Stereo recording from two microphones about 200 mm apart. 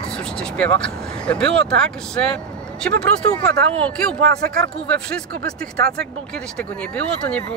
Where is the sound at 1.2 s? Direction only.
5° left (ahead or behind).